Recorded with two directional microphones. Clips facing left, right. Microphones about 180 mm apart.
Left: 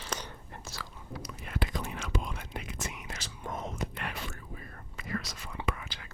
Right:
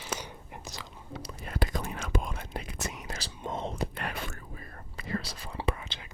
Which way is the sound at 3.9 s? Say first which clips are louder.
Right 2 dB; 45° right (ahead or behind).